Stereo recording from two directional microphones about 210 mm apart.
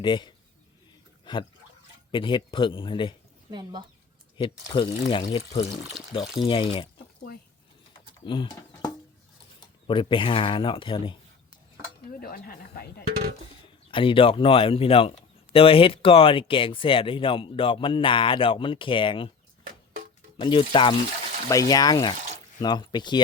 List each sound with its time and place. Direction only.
0.0 s speech: 20° left (ahead or behind)
1.2 s a sound: 20° left (ahead or behind)
2.1 s speech: 25° left (ahead or behind)
3.5 s speech: 20° right (ahead or behind)
4.7 s speech: 25° left (ahead or behind)
8.2 s speech: 25° left (ahead or behind)
12.2 s speech: 45° left (ahead or behind)
13.9 s speech: 25° left (ahead or behind)
20.3 s speech: 25° left (ahead or behind)